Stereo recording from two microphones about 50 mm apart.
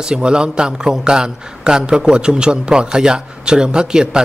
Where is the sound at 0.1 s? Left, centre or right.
Centre.